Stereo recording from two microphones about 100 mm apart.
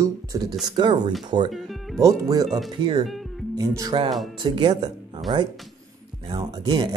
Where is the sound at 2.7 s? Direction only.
55° right (ahead or behind).